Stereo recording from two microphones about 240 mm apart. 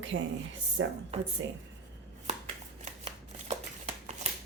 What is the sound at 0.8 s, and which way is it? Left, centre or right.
Speech, right.